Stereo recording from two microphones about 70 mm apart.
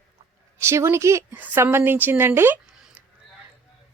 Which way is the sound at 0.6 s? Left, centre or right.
Right.